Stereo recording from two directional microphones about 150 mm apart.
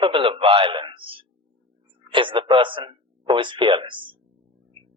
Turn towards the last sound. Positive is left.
turn(degrees=-35)  # may be behind; listen again after turning